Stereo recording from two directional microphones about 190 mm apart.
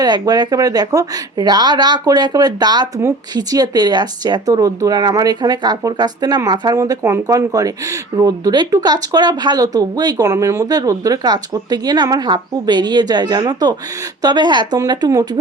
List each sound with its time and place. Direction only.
0.0 s speech: 20° right (ahead or behind)